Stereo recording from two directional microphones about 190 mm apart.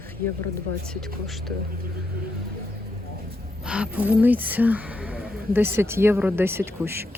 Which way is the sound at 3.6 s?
5° right (ahead or behind).